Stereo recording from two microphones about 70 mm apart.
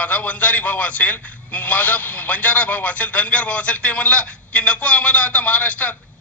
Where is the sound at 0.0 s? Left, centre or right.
Left.